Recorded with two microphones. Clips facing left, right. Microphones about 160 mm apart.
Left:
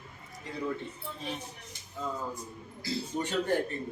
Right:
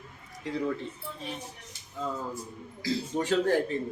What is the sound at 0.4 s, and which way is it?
Speech, 90° right.